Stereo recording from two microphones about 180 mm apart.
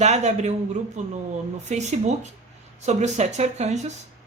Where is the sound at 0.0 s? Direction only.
40° right (ahead or behind).